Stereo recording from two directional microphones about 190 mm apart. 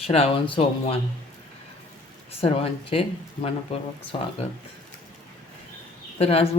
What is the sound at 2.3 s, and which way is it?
Speech, 30° left (ahead or behind).